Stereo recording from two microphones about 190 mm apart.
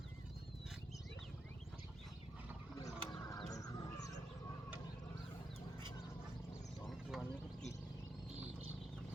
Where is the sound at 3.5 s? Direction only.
20° left (ahead or behind).